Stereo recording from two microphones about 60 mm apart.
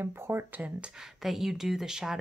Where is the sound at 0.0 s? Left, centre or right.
Right.